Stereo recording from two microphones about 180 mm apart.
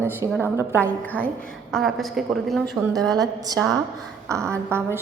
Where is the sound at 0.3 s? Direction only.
10° right (ahead or behind).